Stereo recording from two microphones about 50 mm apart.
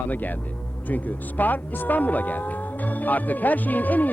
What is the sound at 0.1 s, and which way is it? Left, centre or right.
Speech, left.